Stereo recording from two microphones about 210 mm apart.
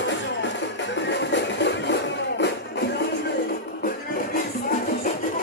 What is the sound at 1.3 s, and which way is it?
Music, 55° left (ahead or behind).